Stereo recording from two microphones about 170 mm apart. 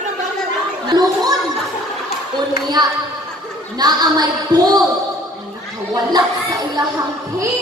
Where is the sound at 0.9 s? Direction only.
20° right (ahead or behind).